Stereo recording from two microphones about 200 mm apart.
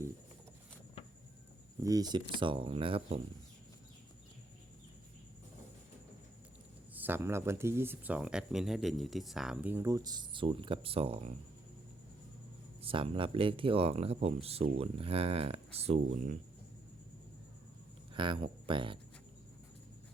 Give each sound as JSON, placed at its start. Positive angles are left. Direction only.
{"t": 1.8, "sound": "speech", "side_deg": -20}
{"t": 6.9, "sound": "speech", "side_deg": -10}
{"t": 12.8, "sound": "speech", "side_deg": -25}
{"t": 18.1, "sound": "speech", "side_deg": -25}